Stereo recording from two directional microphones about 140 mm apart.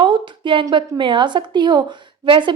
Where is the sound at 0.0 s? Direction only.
35° right (ahead or behind).